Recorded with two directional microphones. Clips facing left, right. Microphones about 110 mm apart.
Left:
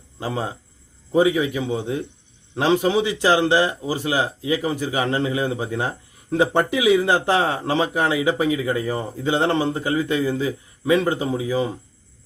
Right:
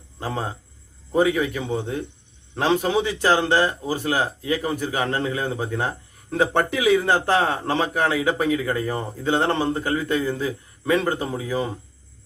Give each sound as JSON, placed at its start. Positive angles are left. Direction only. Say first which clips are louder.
{"t": 1.1, "sound": "a man's voice", "louder": "left 2 dB", "side_deg": 15}